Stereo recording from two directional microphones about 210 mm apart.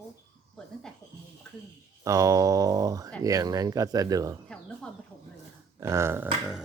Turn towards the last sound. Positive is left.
turn(degrees=-5)  # may be behind; listen again after turning